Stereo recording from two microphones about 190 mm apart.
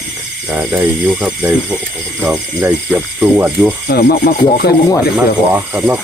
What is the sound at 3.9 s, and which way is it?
Speech, 55° left (ahead or behind).